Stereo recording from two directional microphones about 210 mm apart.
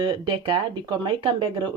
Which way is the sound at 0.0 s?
20° right (ahead or behind).